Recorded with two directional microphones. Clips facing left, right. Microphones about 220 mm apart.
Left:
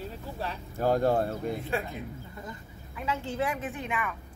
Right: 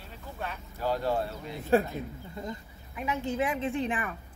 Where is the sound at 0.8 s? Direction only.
50° left (ahead or behind).